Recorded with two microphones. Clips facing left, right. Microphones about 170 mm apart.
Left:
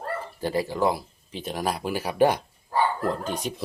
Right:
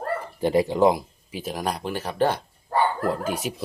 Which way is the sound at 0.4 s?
20° right (ahead or behind).